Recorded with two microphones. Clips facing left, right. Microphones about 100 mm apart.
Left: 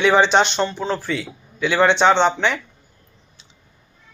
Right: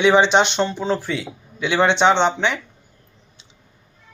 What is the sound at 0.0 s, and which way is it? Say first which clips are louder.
A man's voice: right 1 dB; 20° right (ahead or behind).